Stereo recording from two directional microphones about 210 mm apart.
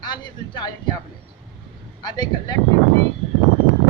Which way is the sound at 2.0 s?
20° left (ahead or behind).